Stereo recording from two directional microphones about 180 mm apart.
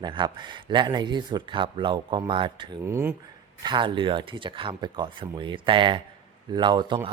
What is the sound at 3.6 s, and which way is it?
Speech, 25° right (ahead or behind).